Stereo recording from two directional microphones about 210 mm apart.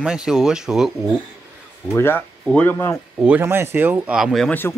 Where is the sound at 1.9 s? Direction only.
10° left (ahead or behind).